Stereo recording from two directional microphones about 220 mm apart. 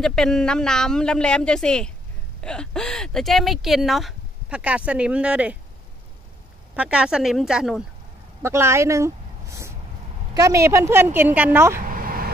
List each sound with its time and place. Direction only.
0.0 s speech: centre (ahead or behind)
6.7 s speech: 5° right (ahead or behind)
8.4 s a sound: 10° right (ahead or behind)
10.3 s a woman's voice: 15° right (ahead or behind)
11.8 s vehicle: 40° right (ahead or behind)